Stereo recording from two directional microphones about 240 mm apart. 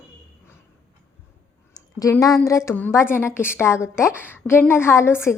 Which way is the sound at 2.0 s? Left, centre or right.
Centre.